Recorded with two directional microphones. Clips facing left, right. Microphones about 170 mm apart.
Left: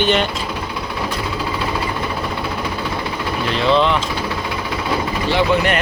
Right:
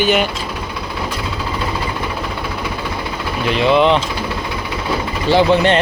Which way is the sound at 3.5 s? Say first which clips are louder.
Right 3 dB; 15° right (ahead or behind).